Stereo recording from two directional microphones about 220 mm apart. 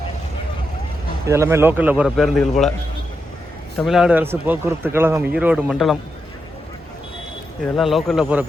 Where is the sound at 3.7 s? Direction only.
Centre (ahead or behind).